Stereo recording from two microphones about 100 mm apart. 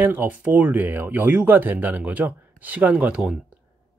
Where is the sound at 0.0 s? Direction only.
20° right (ahead or behind).